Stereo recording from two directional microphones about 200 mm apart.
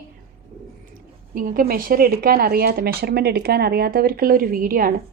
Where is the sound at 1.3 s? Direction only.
45° right (ahead or behind).